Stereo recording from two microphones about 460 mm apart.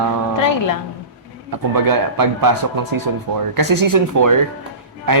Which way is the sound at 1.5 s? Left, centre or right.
Right.